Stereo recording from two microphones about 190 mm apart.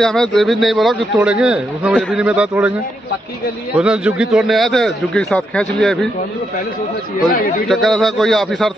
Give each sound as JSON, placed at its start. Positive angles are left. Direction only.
{"t": 0.0, "sound": "a man's voice", "side_deg": 0}
{"t": 3.7, "sound": "a man's voice", "side_deg": -5}
{"t": 7.2, "sound": "speech", "side_deg": 50}
{"t": 7.6, "sound": "a man's voice", "side_deg": 0}